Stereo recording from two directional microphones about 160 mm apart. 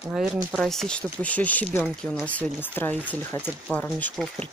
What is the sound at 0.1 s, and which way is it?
Speech, 5° right (ahead or behind).